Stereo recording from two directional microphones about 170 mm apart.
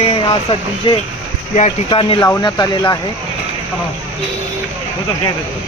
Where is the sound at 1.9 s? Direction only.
30° left (ahead or behind).